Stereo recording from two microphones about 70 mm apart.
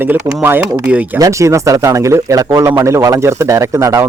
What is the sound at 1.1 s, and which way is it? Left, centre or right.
Speech, right.